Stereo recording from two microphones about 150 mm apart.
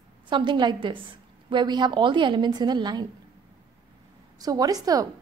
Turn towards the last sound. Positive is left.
turn(degrees=-25)  # may be behind; listen again after turning